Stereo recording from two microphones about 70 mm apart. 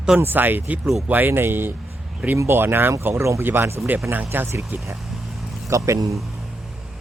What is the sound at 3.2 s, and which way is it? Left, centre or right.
Speech, right.